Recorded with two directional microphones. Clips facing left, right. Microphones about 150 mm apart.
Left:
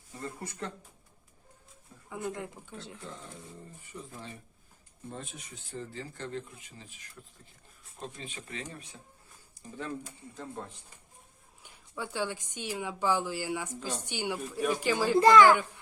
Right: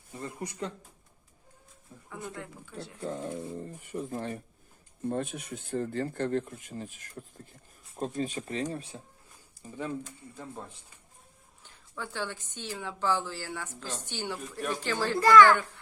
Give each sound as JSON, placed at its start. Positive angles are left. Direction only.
{"t": 0.2, "sound": "speech", "side_deg": -15}
{"t": 2.0, "sound": "speech", "side_deg": 20}
{"t": 3.0, "sound": "speech", "side_deg": -45}
{"t": 3.8, "sound": "speech", "side_deg": -55}
{"t": 9.6, "sound": "speech", "side_deg": -15}
{"t": 11.6, "sound": "speech", "side_deg": 10}